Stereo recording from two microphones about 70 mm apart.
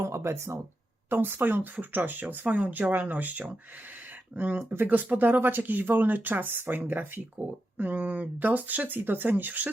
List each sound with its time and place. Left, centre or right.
0.0 s speech: right